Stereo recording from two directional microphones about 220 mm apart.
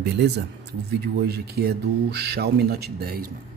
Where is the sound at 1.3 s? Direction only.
45° right (ahead or behind).